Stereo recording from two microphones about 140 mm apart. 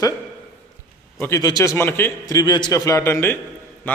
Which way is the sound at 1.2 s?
25° left (ahead or behind).